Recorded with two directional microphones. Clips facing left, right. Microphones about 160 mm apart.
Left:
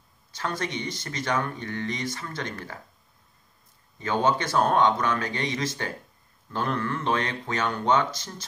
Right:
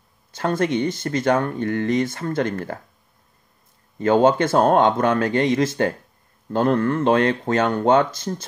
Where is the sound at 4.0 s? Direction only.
55° right (ahead or behind).